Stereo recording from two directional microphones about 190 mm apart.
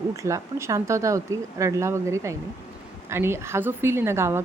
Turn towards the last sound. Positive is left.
turn(degrees=-15)  # may be behind; listen again after turning